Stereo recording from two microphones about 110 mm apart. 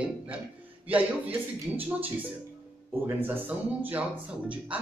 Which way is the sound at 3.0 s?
20° right (ahead or behind).